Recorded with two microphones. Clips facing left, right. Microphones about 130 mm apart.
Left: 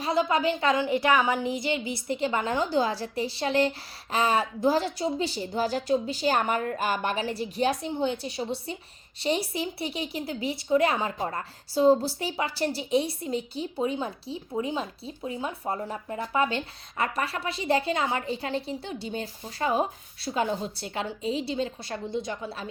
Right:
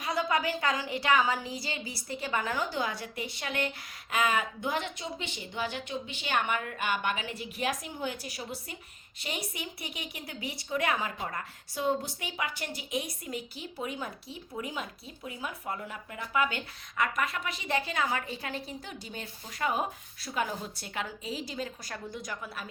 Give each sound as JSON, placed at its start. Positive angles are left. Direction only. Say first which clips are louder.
{"t": 0.0, "sound": "a woman's voice", "louder": "left 5 dB", "side_deg": 25}